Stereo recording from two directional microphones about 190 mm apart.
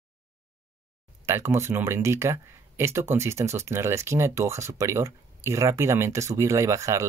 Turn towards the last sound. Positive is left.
turn(degrees=-15)  # may be behind; listen again after turning